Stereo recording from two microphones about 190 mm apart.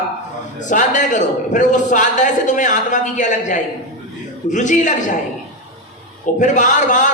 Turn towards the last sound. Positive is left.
turn(degrees=40)  # may be behind; listen again after turning